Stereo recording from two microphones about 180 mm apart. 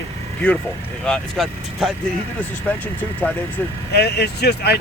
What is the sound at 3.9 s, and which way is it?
Speech, 65° left (ahead or behind).